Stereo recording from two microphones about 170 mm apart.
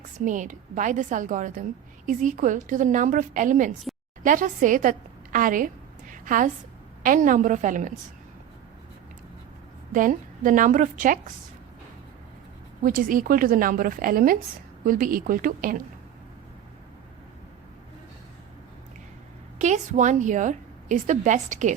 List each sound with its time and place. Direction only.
0.3 s a woman's voice: 50° right (ahead or behind)
9.9 s a woman's voice: 50° right (ahead or behind)
12.8 s a woman's voice: 55° right (ahead or behind)
19.5 s a woman's voice: 45° right (ahead or behind)